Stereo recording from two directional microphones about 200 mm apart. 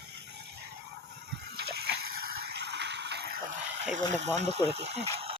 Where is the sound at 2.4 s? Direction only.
55° right (ahead or behind).